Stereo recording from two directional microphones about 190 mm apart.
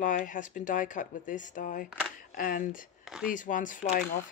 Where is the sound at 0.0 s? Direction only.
45° left (ahead or behind).